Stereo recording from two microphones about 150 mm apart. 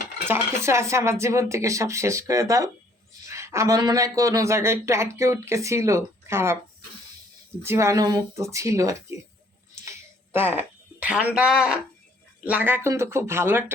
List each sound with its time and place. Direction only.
0.3 s speech: 15° right (ahead or behind)
7.6 s speech: 20° right (ahead or behind)
9.8 s a sound: 15° right (ahead or behind)
11.3 s speech: 5° right (ahead or behind)